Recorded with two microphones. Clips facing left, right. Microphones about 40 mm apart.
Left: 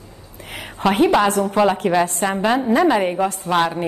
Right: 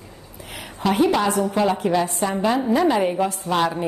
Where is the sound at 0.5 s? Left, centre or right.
Left.